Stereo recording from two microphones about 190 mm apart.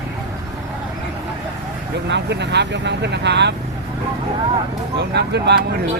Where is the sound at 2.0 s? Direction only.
65° right (ahead or behind).